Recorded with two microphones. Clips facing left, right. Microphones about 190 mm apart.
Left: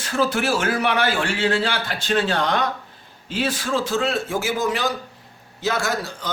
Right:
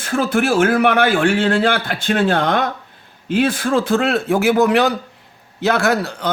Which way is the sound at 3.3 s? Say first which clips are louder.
Right 7 dB; 55° right (ahead or behind).